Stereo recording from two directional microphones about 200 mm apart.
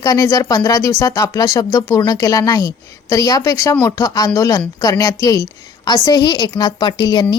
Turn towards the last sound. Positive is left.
turn(degrees=20)  # may be behind; listen again after turning